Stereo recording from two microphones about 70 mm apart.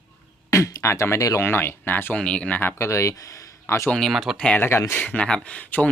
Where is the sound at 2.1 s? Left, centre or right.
Centre.